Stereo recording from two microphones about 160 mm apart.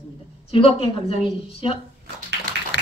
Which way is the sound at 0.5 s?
35° left (ahead or behind).